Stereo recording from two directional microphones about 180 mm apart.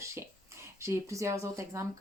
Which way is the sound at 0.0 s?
15° right (ahead or behind).